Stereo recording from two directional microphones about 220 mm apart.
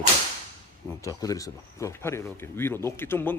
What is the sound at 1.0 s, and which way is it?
Speech, 15° left (ahead or behind).